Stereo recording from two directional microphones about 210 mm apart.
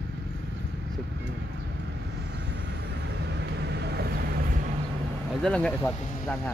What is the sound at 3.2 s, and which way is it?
Vehicle, 50° right (ahead or behind).